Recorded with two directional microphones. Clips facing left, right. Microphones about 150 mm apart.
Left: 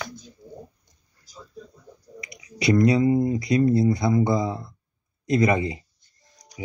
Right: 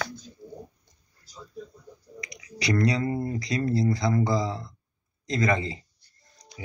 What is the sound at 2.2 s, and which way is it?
Speech, 25° left (ahead or behind).